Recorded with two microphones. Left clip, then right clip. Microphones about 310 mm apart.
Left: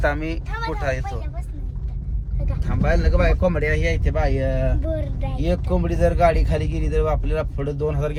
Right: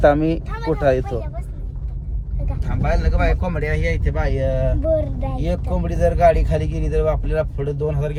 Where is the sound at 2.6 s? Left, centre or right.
Centre.